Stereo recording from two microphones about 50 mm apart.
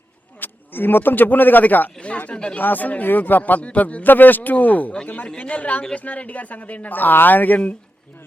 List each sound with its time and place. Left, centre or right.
0.3 s speech: left
2.0 s chatter: left
2.3 s a man's voice: centre
2.6 s speech: left
3.6 s a man's voice: left
4.0 s speech: left
5.3 s a man's voice: left